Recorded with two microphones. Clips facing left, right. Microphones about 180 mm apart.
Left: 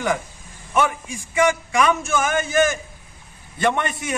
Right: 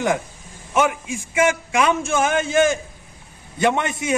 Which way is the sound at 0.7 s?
20° right (ahead or behind).